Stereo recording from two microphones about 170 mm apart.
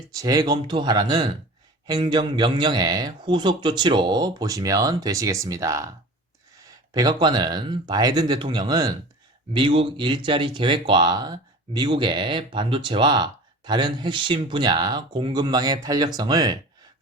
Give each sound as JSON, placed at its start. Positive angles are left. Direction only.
{"t": 0.1, "sound": "speech", "side_deg": -20}